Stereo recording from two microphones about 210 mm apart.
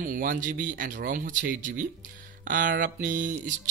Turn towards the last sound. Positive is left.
turn(degrees=-40)  # may be behind; listen again after turning